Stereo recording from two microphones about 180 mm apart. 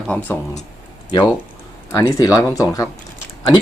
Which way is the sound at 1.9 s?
15° left (ahead or behind).